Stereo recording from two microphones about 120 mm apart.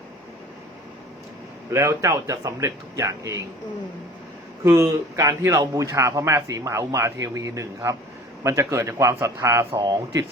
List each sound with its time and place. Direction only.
1.7 s a man's voice: 25° right (ahead or behind)
4.6 s a man's voice: 25° right (ahead or behind)